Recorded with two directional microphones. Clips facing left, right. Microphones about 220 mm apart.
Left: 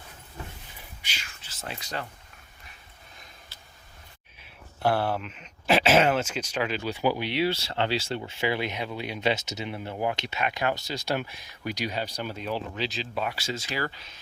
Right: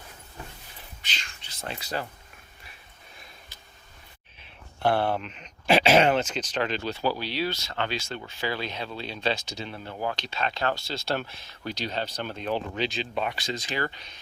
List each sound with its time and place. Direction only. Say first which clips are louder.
1.0 s whispering: right 3 dB; 10° left (ahead or behind)
4.8 s speech: right 1 dB; 5° left (ahead or behind)